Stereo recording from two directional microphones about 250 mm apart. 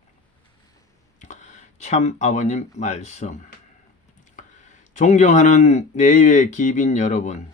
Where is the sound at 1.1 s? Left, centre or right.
Left.